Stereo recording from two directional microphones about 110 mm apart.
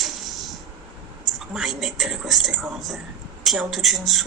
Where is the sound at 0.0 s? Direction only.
Centre (ahead or behind).